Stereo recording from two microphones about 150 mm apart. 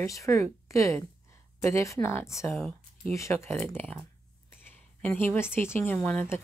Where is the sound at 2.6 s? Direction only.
5° left (ahead or behind).